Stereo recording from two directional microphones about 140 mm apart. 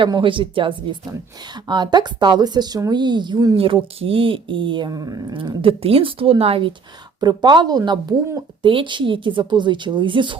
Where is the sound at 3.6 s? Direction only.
40° right (ahead or behind).